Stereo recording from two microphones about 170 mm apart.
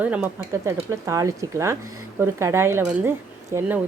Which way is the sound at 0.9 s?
20° right (ahead or behind).